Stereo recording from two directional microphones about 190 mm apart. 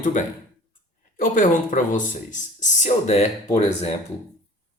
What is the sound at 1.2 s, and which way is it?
Speech, 45° left (ahead or behind).